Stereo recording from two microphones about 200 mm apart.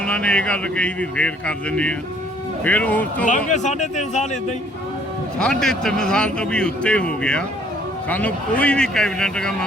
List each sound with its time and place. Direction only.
0.0 s a man's voice: 5° left (ahead or behind)
3.2 s speech: 40° left (ahead or behind)
5.4 s a man's voice: 5° left (ahead or behind)